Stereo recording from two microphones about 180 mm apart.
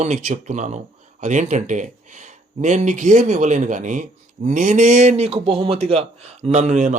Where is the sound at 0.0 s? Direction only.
40° right (ahead or behind).